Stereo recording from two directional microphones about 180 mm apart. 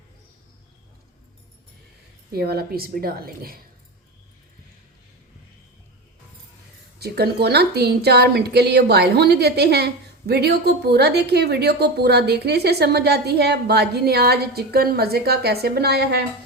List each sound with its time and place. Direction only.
2.3 s a woman's voice: 60° right (ahead or behind)
7.0 s a woman's voice: 65° right (ahead or behind)